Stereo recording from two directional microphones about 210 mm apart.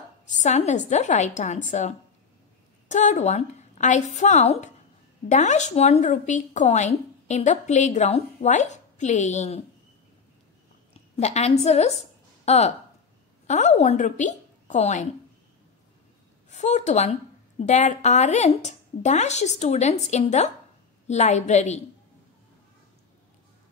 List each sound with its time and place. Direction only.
0.3 s speech: 35° left (ahead or behind)
10.9 s a woman's voice: 30° left (ahead or behind)
16.4 s a woman's voice: 35° left (ahead or behind)